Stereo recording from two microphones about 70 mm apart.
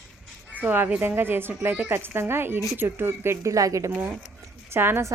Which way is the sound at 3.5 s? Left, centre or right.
Right.